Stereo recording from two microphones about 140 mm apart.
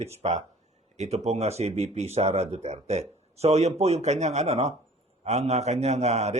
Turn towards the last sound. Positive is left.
turn(degrees=-50)  # may be behind; listen again after turning